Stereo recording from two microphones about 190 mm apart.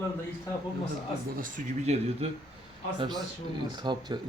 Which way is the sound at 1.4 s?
40° right (ahead or behind).